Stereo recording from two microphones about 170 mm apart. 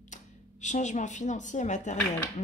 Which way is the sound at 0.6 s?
45° left (ahead or behind).